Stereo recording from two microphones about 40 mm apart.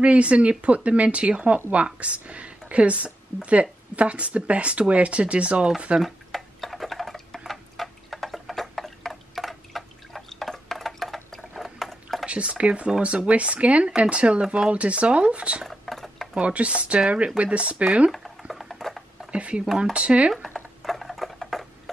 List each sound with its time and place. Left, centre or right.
0.0 s speech: right
6.0 s tick-tock: centre
10.7 s a sound: centre
12.3 s speech: right
15.6 s scissors: centre
16.3 s speech: right
18.1 s a sound: centre
19.3 s speech: right
20.8 s patter: centre